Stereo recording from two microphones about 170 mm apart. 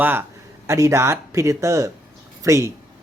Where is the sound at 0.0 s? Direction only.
10° right (ahead or behind).